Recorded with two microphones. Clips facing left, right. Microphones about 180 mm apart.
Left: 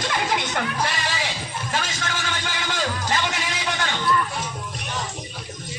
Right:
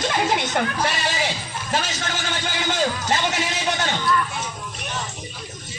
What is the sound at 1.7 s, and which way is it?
A man's voice, 30° right (ahead or behind).